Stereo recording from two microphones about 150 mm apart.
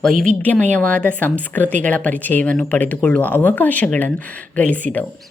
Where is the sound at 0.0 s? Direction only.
5° left (ahead or behind).